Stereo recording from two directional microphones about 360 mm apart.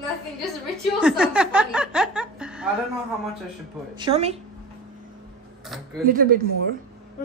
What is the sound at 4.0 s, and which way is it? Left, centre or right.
Speech, centre.